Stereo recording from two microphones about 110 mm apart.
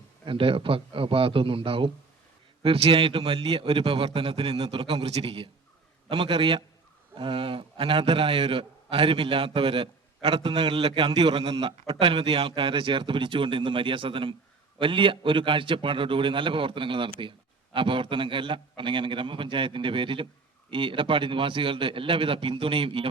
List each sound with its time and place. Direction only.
0.3 s a man's voice: 55° right (ahead or behind)